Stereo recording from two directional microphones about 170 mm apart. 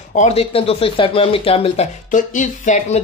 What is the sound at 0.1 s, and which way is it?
Speech, 40° left (ahead or behind).